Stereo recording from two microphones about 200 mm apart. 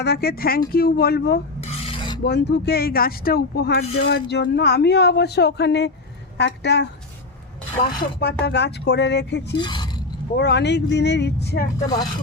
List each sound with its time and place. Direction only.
0.0 s speech: 55° left (ahead or behind)
1.6 s cutlery: 30° left (ahead or behind)
2.2 s speech: 55° left (ahead or behind)
7.8 s speech: 35° left (ahead or behind)
8.2 s speech: 55° left (ahead or behind)
9.6 s speech: 20° left (ahead or behind)
10.3 s speech: 55° left (ahead or behind)